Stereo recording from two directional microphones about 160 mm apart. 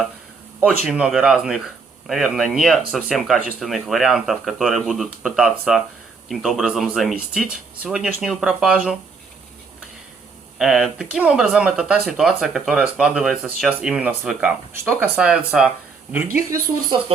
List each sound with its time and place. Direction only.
0.9 s speech: 5° right (ahead or behind)
10.6 s speech: centre (ahead or behind)